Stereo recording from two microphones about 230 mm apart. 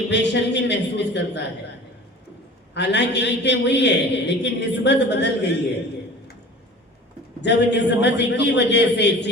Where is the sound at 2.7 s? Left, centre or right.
Left.